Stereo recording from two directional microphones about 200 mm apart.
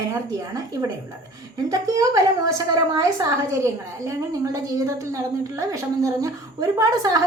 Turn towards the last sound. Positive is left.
turn(degrees=-20)  # may be behind; listen again after turning